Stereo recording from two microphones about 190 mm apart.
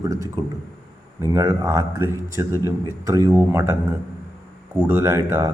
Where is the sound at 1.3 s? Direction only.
15° right (ahead or behind).